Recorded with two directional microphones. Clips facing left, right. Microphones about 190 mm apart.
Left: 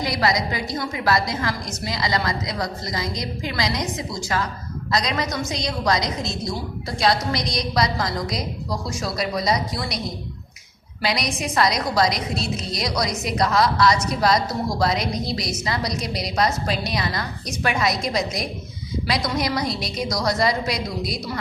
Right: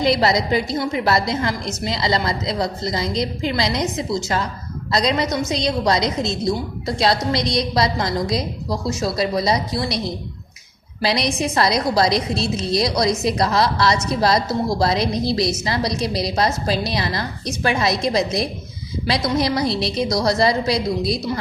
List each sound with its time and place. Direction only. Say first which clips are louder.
0.0 s a woman's voice: right 5 dB; 25° right (ahead or behind)
11.0 s a woman's voice: right 4 dB; 30° right (ahead or behind)